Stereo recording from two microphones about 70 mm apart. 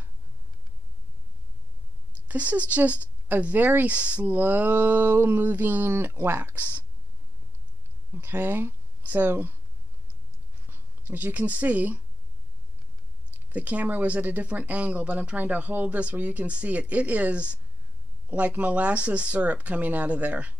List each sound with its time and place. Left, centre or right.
2.2 s speech: right
8.1 s speech: right
10.7 s speech: right
13.5 s speech: centre